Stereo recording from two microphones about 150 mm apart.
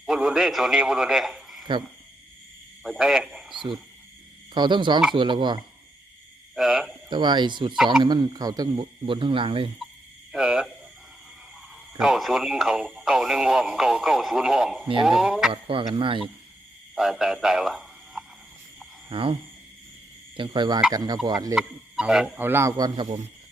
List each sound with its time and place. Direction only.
0.0 s a man's voice: 5° right (ahead or behind)
2.8 s speech: centre (ahead or behind)
4.5 s speech: 30° right (ahead or behind)
6.6 s speech: 5° right (ahead or behind)
7.1 s speech: 30° right (ahead or behind)
10.3 s speech: 5° right (ahead or behind)
11.9 s speech: 5° right (ahead or behind)
15.6 s speech: 35° right (ahead or behind)
16.9 s speech: 5° right (ahead or behind)
19.0 s speech: 35° right (ahead or behind)
21.5 s a man's voice: 5° right (ahead or behind)